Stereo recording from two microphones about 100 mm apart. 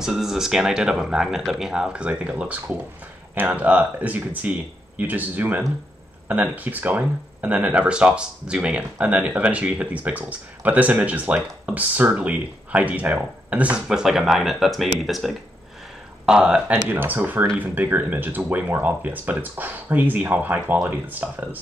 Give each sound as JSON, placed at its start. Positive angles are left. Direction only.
{"t": 0.0, "sound": "speech", "side_deg": -5}